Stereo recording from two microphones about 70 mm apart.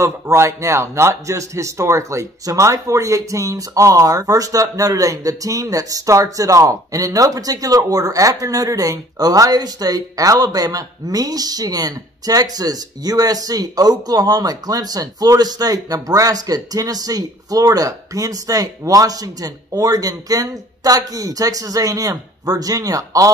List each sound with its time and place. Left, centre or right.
0.0 s a man's voice: right